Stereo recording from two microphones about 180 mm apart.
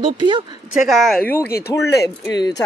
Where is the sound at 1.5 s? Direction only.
60° left (ahead or behind).